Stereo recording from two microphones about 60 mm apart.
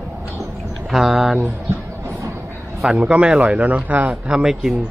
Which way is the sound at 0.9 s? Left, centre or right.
Centre.